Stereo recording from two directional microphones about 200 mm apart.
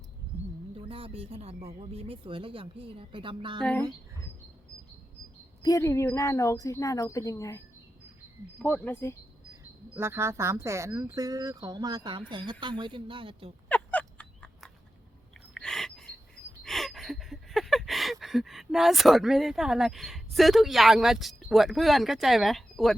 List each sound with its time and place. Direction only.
0.8 s speech: 25° right (ahead or behind)
5.6 s speech: 15° left (ahead or behind)
9.9 s speech: 10° right (ahead or behind)
13.7 s a sound: 5° left (ahead or behind)